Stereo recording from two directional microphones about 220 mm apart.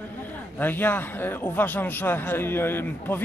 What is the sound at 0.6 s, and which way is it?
Speech, 10° left (ahead or behind).